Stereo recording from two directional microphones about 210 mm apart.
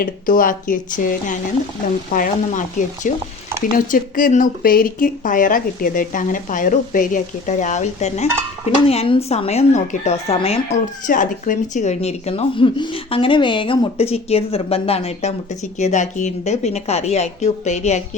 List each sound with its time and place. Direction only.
0.0 s speech: 40° left (ahead or behind)
11.0 s speech: 40° left (ahead or behind)